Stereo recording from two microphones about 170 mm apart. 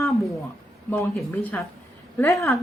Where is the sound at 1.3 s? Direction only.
15° left (ahead or behind).